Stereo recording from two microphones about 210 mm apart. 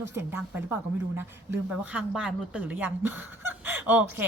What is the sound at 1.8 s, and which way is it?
A woman's voice, 5° right (ahead or behind).